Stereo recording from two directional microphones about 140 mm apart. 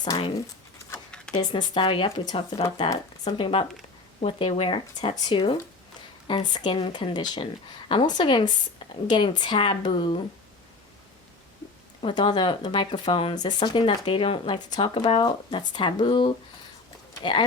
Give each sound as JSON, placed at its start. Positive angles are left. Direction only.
{"t": 0.0, "sound": "speech", "side_deg": 35}
{"t": 0.9, "sound": "a sound", "side_deg": 10}
{"t": 1.4, "sound": "speech", "side_deg": 35}
{"t": 12.0, "sound": "speech", "side_deg": 35}